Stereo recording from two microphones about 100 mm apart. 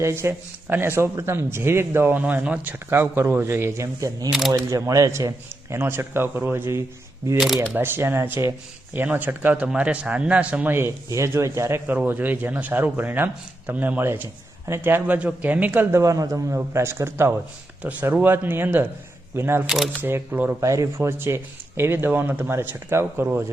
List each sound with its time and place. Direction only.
0.0 s speech: 25° right (ahead or behind)
4.3 s speech: centre (ahead or behind)
4.5 s speech: 35° right (ahead or behind)
7.3 s speech: 5° right (ahead or behind)
7.8 s speech: 20° right (ahead or behind)
19.6 s speech: centre (ahead or behind)
20.0 s speech: 20° right (ahead or behind)